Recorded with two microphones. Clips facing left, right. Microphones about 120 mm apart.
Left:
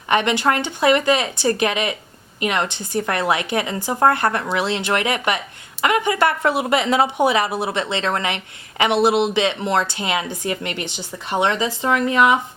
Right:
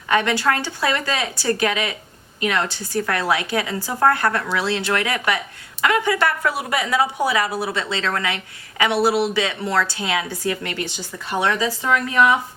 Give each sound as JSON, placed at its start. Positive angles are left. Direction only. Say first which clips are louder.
{"t": 0.1, "sound": "a woman's voice", "louder": "left 1 dB", "side_deg": 20}